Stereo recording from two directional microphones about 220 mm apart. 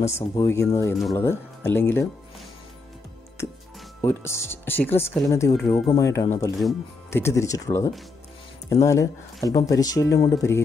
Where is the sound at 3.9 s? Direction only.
10° left (ahead or behind).